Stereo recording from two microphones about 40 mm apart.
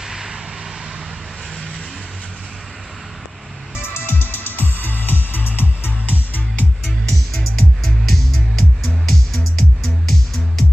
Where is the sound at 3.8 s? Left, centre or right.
Left.